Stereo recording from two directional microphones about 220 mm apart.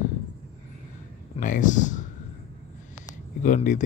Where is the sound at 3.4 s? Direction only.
35° left (ahead or behind).